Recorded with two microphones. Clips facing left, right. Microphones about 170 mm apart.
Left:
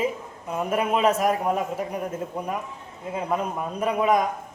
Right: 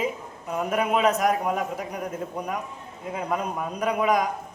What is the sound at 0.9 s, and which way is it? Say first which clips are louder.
Speech: left 1 dB; 30° left (ahead or behind).